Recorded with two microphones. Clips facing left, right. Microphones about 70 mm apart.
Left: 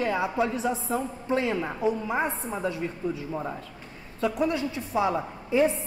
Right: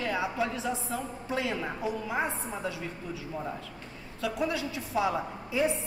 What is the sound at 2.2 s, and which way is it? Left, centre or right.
Speech, centre.